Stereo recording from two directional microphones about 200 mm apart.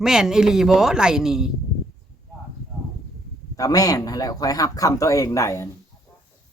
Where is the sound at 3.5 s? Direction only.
15° left (ahead or behind).